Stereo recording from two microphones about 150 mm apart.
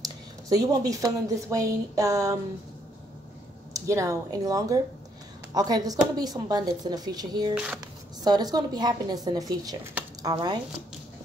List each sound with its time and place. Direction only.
0.5 s speech: 25° right (ahead or behind)
3.8 s speech: 20° right (ahead or behind)
7.5 s speech: 5° right (ahead or behind)
8.2 s speech: 25° right (ahead or behind)